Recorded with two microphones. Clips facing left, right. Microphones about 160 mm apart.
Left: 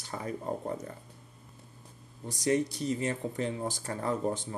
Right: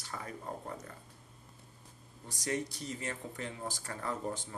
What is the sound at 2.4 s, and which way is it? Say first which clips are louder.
Speech: left 8 dB; 25° left (ahead or behind).